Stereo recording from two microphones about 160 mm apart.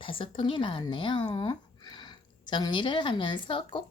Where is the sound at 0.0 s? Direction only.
35° left (ahead or behind).